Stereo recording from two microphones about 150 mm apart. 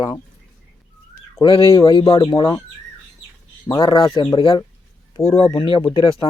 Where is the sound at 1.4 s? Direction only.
35° left (ahead or behind).